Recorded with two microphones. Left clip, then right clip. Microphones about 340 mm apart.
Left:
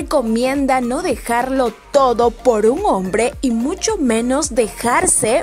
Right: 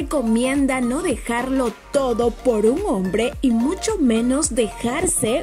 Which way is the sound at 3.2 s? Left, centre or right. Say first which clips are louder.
Left 3 dB; left.